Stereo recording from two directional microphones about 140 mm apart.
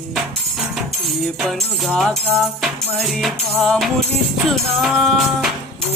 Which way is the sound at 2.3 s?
Centre (ahead or behind).